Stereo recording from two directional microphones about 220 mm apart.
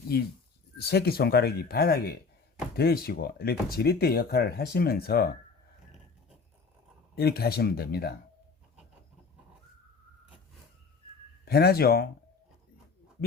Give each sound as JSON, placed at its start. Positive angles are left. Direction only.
{"t": 0.1, "sound": "speech", "side_deg": 45}
{"t": 7.2, "sound": "speech", "side_deg": 45}
{"t": 11.4, "sound": "speech", "side_deg": 45}